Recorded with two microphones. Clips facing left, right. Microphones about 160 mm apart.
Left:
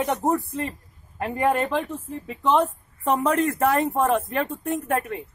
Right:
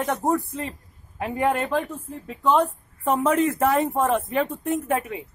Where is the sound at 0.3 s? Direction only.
Centre (ahead or behind).